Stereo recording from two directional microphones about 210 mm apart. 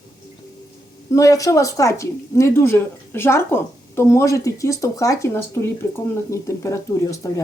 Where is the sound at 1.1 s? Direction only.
15° left (ahead or behind).